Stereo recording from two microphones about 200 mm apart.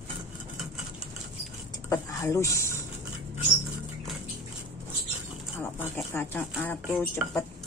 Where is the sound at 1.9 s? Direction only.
15° left (ahead or behind).